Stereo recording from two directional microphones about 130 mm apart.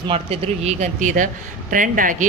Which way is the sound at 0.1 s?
50° right (ahead or behind).